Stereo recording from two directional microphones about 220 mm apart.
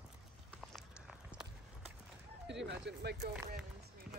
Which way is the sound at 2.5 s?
50° right (ahead or behind).